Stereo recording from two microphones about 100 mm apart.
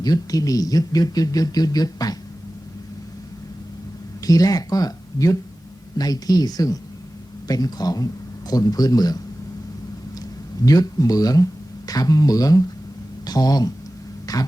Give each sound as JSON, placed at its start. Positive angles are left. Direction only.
{"t": 0.0, "sound": "speech", "side_deg": 40}
{"t": 4.2, "sound": "speech", "side_deg": 35}
{"t": 10.7, "sound": "speech", "side_deg": 35}